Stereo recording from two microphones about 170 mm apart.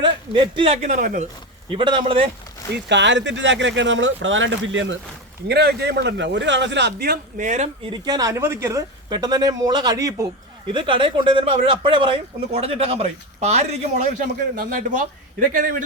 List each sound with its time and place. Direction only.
0.0 s speech: 30° right (ahead or behind)
0.9 s speech: 50° right (ahead or behind)
1.7 s speech: 30° right (ahead or behind)
2.7 s speech: 90° right
5.5 s speech: 70° right (ahead or behind)
7.4 s speech: 45° right (ahead or behind)
7.9 s speech: 25° right (ahead or behind)
14.5 s speech: 55° right (ahead or behind)